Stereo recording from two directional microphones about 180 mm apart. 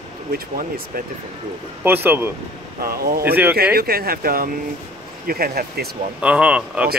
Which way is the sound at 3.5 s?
60° right (ahead or behind).